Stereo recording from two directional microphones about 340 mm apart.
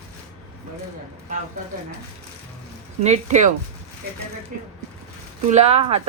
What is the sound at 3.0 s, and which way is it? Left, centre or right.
Speech, centre.